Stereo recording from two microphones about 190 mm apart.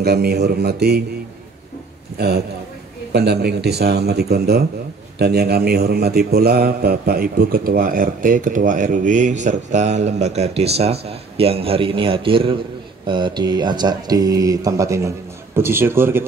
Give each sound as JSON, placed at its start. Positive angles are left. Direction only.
{"t": 0.0, "sound": "a man's voice", "side_deg": -55}
{"t": 2.1, "sound": "a man's voice", "side_deg": -55}